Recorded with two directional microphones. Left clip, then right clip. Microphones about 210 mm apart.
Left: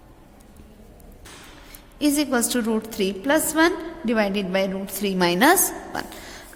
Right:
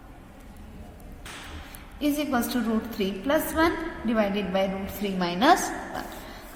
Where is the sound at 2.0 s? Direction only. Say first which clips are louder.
Left 5 dB; 50° left (ahead or behind).